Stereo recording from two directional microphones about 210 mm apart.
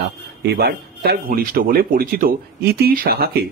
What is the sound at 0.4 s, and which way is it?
Speech, 50° right (ahead or behind).